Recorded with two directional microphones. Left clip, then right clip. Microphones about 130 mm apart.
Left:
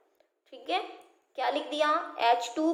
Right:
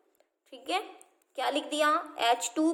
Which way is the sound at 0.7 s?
60° right (ahead or behind).